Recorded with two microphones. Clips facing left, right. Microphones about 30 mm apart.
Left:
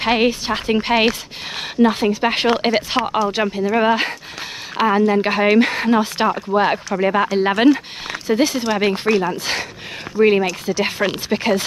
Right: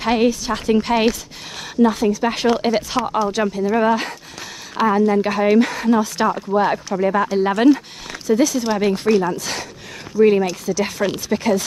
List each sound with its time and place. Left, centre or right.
0.0 s a woman's voice: left